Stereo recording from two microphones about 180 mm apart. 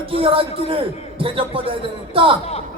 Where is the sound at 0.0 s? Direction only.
30° right (ahead or behind).